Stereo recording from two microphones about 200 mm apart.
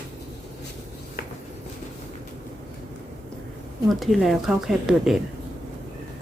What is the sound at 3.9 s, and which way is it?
Speech, centre (ahead or behind).